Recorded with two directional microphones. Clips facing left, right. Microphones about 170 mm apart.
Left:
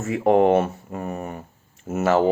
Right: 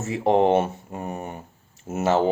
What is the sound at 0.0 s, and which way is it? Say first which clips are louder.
Speech: left 2 dB; 25° right (ahead or behind).